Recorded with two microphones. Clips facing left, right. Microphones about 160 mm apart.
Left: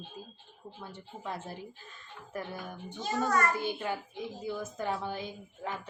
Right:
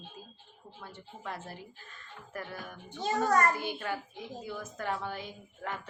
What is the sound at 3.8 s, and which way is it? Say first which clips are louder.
Speech: left 2 dB; 15° left (ahead or behind).